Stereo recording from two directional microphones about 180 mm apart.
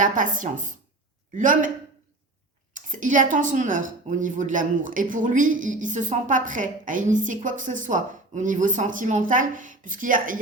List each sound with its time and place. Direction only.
0.0 s a woman's voice: 45° right (ahead or behind)
2.7 s a woman's voice: 45° right (ahead or behind)